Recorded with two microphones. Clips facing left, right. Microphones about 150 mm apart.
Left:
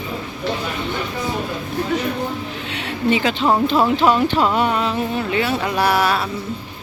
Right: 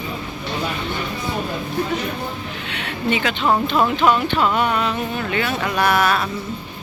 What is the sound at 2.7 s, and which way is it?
Speech, 35° left (ahead or behind).